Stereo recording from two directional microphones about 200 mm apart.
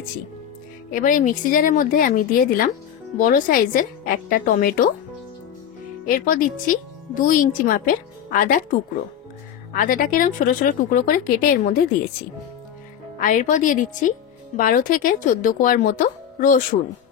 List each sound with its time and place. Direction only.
0.8 s speech: 40° left (ahead or behind)
6.0 s speech: 40° left (ahead or behind)
13.2 s a woman's voice: 40° left (ahead or behind)